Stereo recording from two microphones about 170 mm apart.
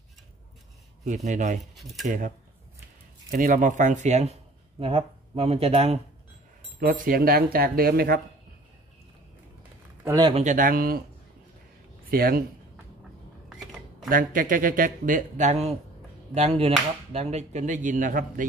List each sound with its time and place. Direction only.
1.0 s speech: 45° right (ahead or behind)
6.8 s speech: 55° right (ahead or behind)
10.1 s speech: 30° right (ahead or behind)
10.4 s speech: 50° right (ahead or behind)
12.1 s speech: 60° right (ahead or behind)
14.0 s speech: 55° right (ahead or behind)